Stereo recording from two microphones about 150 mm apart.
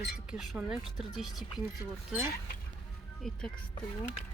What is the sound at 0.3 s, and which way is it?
Speech, 5° right (ahead or behind).